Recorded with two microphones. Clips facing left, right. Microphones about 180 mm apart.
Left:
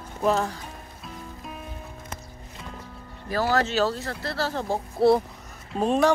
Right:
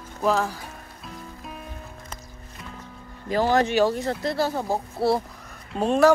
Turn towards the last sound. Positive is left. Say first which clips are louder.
# right 3 dB
turn(degrees=0)  # may be behind; listen again after turning